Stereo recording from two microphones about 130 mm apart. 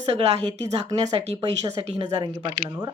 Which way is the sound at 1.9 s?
60° right (ahead or behind).